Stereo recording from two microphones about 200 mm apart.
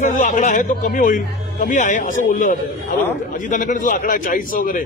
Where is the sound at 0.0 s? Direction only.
40° left (ahead or behind).